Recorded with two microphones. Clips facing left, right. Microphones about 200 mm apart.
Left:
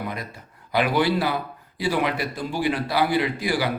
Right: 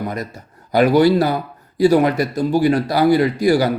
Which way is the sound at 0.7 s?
40° right (ahead or behind).